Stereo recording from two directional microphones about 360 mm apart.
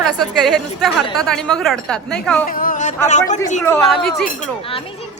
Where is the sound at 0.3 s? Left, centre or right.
Centre.